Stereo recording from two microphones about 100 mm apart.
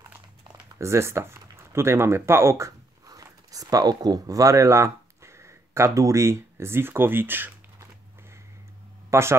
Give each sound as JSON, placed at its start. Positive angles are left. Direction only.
{"t": 0.7, "sound": "speech", "side_deg": -25}
{"t": 9.1, "sound": "speech", "side_deg": -25}